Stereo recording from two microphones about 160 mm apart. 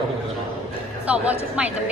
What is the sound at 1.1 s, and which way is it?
Speech, 10° right (ahead or behind).